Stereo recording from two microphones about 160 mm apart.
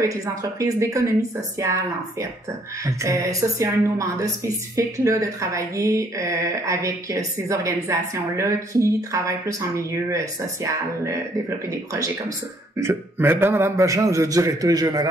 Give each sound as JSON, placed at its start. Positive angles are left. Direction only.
{"t": 0.0, "sound": "a woman's voice", "side_deg": -20}
{"t": 12.8, "sound": "a woman's voice", "side_deg": -15}